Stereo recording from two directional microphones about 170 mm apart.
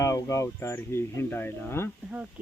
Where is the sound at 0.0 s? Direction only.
20° left (ahead or behind).